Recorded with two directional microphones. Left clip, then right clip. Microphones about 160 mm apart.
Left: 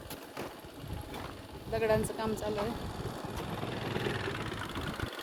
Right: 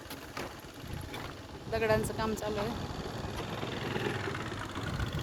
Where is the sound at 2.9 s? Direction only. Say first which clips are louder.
Right 1 dB; 40° right (ahead or behind); by 4.9 s 60° right (ahead or behind).